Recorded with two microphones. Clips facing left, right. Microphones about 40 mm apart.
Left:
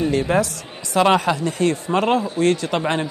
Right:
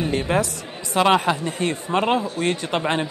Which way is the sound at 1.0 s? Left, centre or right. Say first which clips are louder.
Left 1 dB; centre.